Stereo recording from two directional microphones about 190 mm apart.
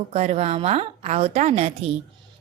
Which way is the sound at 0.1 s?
35° right (ahead or behind).